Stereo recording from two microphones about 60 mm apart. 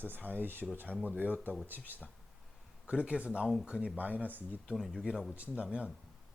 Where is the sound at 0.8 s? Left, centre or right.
Left.